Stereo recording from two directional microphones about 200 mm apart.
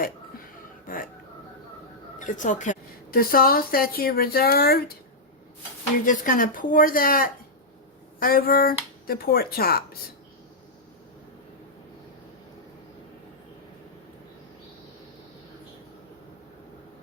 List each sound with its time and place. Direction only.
0.9 s speech: 45° left (ahead or behind)
2.1 s a woman's voice: 40° left (ahead or behind)
6.1 s a woman's voice: 45° left (ahead or behind)